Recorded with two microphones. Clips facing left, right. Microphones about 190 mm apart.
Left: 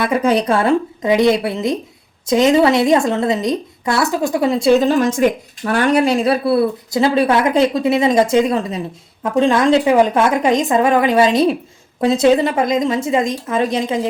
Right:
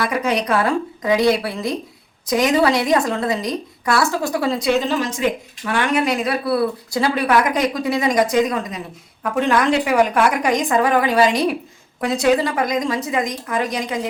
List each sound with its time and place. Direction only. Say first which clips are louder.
0.0 s speech: left 5 dB; 30° left (ahead or behind)
4.7 s speech: left 9 dB; 45° left (ahead or behind); by 14.1 s 25° left (ahead or behind)